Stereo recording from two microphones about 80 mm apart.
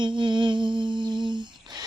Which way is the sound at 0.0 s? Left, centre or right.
Right.